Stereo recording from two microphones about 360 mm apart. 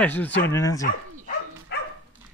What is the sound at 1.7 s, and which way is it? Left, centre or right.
Dog, left.